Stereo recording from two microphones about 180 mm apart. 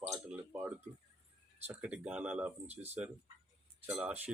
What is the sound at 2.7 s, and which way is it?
Speech, 35° right (ahead or behind).